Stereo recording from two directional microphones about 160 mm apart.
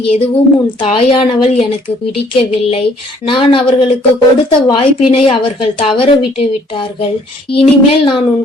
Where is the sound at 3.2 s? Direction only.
30° left (ahead or behind).